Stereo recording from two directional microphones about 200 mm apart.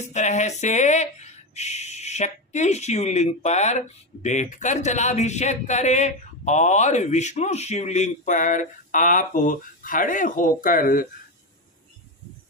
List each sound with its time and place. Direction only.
0.0 s speech: 35° left (ahead or behind)